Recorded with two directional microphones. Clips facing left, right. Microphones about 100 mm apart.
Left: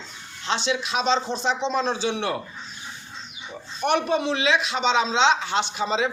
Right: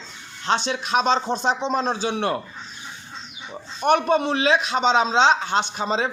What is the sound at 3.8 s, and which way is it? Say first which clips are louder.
A man's voice: right 3 dB; 45° right (ahead or behind).